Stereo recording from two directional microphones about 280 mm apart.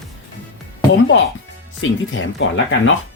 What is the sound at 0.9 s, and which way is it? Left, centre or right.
Speech, left.